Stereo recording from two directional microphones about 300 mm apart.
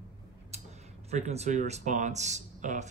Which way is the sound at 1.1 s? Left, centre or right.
Right.